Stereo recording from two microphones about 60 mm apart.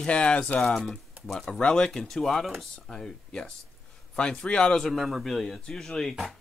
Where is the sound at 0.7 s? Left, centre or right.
Centre.